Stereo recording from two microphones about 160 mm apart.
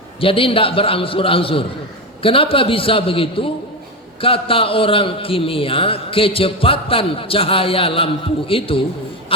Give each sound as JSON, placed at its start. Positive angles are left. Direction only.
{"t": 0.2, "sound": "a man's voice", "side_deg": 35}